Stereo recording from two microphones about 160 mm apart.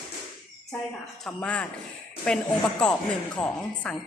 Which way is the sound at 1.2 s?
10° left (ahead or behind).